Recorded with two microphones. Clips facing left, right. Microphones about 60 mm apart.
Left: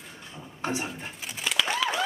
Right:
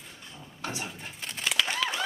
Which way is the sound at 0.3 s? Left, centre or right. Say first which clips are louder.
Left 6 dB; left.